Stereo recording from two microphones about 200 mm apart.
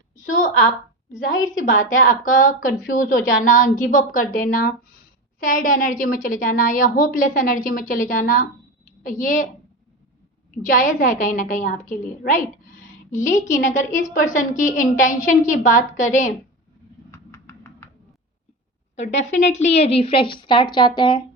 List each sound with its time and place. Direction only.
0.3 s a woman's voice: 40° left (ahead or behind)
1.3 s speech: 20° left (ahead or behind)
1.8 s a woman's voice: 40° left (ahead or behind)
10.8 s a woman's voice: 40° left (ahead or behind)
17.1 s a sound: 15° left (ahead or behind)
18.9 s speech: 35° left (ahead or behind)